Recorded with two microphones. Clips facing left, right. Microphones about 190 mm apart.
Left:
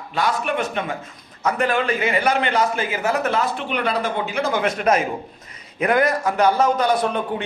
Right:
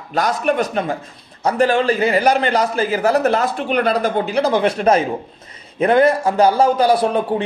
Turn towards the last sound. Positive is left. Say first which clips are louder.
# right 4 dB
turn(degrees=-35)  # may be behind; listen again after turning